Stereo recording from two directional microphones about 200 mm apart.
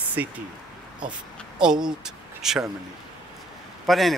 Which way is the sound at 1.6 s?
5° right (ahead or behind).